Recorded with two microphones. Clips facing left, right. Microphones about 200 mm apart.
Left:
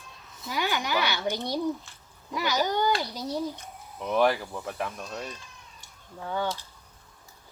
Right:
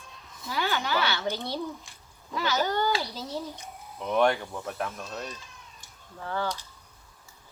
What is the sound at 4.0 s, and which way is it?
Speech, centre (ahead or behind).